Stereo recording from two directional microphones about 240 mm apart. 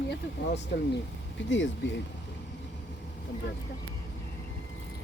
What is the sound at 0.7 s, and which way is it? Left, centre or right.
Speech, left.